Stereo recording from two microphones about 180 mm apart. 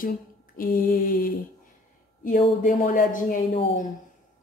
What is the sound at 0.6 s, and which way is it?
A woman's voice, 50° left (ahead or behind).